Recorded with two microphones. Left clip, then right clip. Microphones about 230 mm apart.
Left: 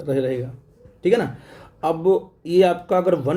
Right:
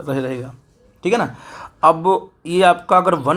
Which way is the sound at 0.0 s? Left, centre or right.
Centre.